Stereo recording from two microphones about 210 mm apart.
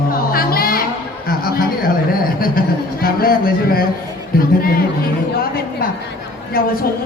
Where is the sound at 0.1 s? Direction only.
45° left (ahead or behind).